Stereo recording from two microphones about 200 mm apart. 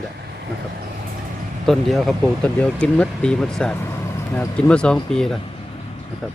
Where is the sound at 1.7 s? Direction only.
Centre (ahead or behind).